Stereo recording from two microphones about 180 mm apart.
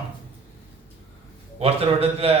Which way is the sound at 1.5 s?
35° right (ahead or behind).